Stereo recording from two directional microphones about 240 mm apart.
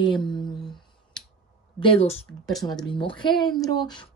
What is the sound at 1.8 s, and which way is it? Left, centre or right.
A woman's voice, left.